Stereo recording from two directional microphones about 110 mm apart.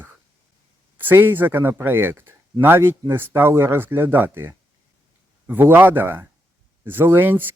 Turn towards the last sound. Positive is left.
turn(degrees=-20)  # may be behind; listen again after turning